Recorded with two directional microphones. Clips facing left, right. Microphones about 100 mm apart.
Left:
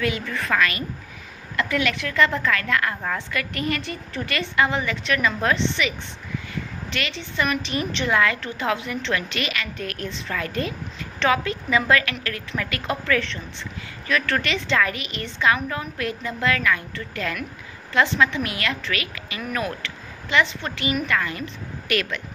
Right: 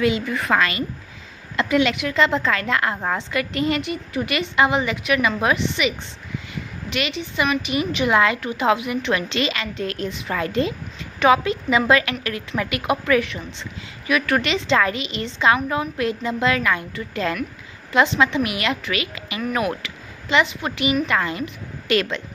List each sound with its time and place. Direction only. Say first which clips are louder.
0.0 s a woman's voice: right 5 dB; 20° right (ahead or behind)
6.5 s a sound: right 4 dB; 15° right (ahead or behind)
7.6 s a woman's voice: right 4 dB; 10° right (ahead or behind)